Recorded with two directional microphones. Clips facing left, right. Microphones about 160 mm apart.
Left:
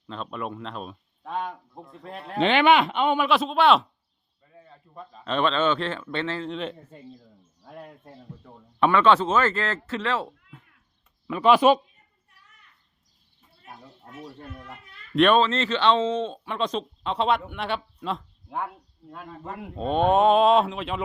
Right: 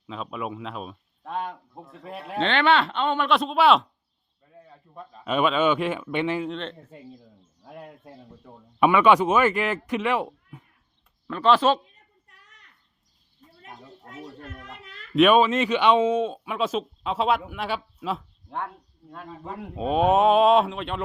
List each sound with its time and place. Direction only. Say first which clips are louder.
0.1 s speech: right 1 dB; 5° right (ahead or behind)
2.4 s speech: left 2 dB; 15° left (ahead or behind); by 6.5 s 15° right (ahead or behind)
6.5 s speech: left 1 dB; 5° left (ahead or behind)
7.6 s speech: right 1 dB; 5° right (ahead or behind)
11.3 s speech: left 2 dB; 10° left (ahead or behind)
12.3 s a sound: right 1 dB; 90° right
14.1 s speech: even; 90° right
15.1 s speech: right 2 dB; 5° right (ahead or behind)